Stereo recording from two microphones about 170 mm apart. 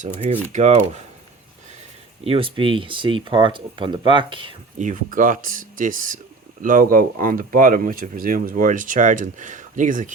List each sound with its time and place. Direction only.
0.0 s speech: 40° right (ahead or behind)
2.2 s speech: 35° right (ahead or behind)
4.8 s speech: 50° right (ahead or behind)